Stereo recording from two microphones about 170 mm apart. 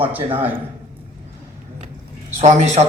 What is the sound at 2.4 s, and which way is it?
Speech, 45° right (ahead or behind).